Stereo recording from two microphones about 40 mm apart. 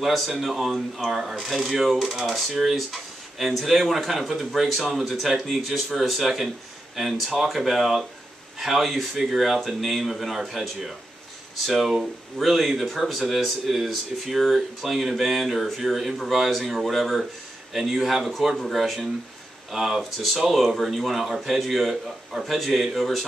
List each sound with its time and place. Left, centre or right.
0.0 s speech: centre